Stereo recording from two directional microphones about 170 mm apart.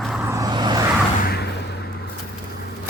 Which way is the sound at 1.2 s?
70° left (ahead or behind).